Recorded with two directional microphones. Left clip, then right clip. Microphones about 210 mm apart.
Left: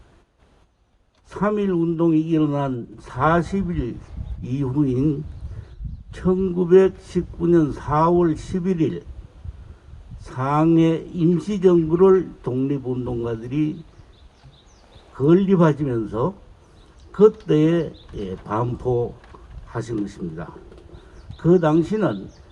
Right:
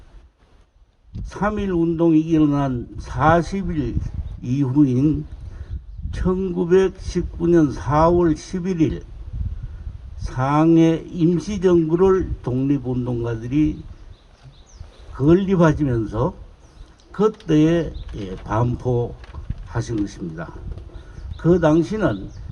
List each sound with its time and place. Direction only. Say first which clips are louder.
1.3 s speech: left 1 dB; 40° right (ahead or behind)
10.2 s speech: right 2 dB; 40° right (ahead or behind)
15.1 s speech: even; 40° right (ahead or behind)